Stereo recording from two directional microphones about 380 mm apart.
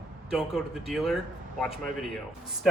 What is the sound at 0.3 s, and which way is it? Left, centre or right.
Speech, centre.